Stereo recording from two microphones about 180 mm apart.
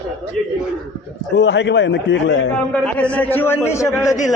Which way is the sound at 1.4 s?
80° left.